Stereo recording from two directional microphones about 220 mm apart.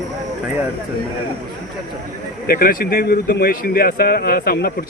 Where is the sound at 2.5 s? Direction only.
40° left (ahead or behind).